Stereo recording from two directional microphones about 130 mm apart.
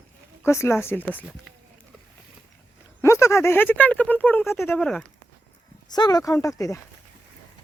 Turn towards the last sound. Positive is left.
turn(degrees=25)  # may be behind; listen again after turning